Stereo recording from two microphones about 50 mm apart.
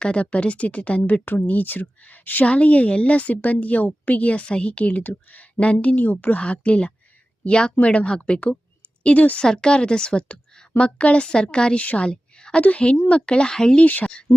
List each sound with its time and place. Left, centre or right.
0.0 s a woman's voice: left
6.4 s a woman's voice: left
9.4 s a woman's voice: centre
12.0 s a sound: centre
12.6 s a woman's voice: left
13.8 s speech: left